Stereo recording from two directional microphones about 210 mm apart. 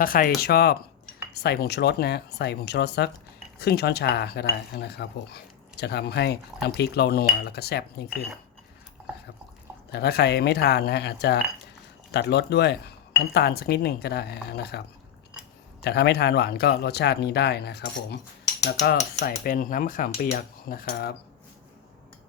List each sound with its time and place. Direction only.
0.0 s speech: 45° left (ahead or behind)
9.9 s speech: 50° left (ahead or behind)
15.8 s speech: 50° left (ahead or behind)